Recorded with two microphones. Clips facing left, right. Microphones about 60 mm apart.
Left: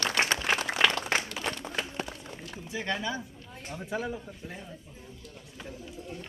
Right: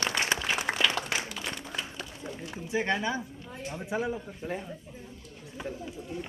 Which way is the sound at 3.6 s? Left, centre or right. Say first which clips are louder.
Right 2 dB; centre.